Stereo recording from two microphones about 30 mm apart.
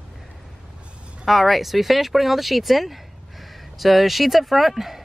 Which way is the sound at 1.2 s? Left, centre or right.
Centre.